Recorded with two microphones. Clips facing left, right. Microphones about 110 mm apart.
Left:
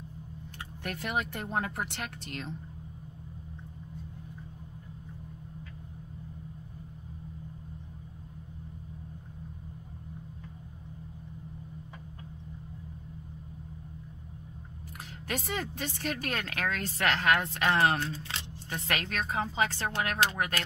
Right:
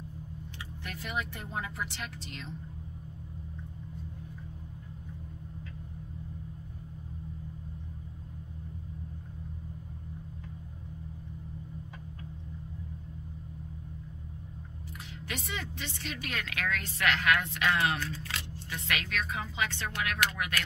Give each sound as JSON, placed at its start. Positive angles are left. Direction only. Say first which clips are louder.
{"t": 0.8, "sound": "speech", "louder": "left 4 dB", "side_deg": 55}
{"t": 15.2, "sound": "speech", "louder": "left 5 dB", "side_deg": 45}
{"t": 18.7, "sound": "speech", "louder": "left 2 dB", "side_deg": 40}